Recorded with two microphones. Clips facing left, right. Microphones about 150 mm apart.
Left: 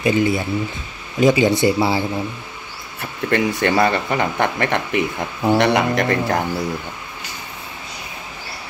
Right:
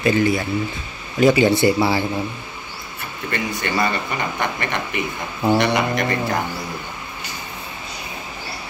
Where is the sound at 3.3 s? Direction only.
75° left (ahead or behind).